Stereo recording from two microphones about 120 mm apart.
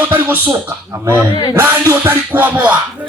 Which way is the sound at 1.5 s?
20° right (ahead or behind).